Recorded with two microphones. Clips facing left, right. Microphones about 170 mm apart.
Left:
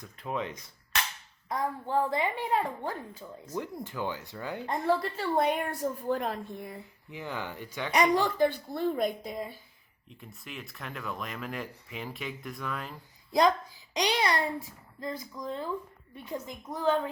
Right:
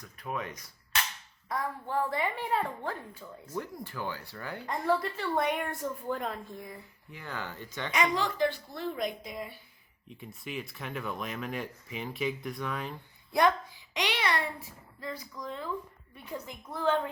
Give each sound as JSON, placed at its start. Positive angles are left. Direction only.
{"t": 0.0, "sound": "speech", "side_deg": 25}
{"t": 6.7, "sound": "speech", "side_deg": 20}
{"t": 8.1, "sound": "speech", "side_deg": 50}
{"t": 10.2, "sound": "speech", "side_deg": 0}
{"t": 13.9, "sound": "a child's voice", "side_deg": 40}
{"t": 15.0, "sound": "speech", "side_deg": 20}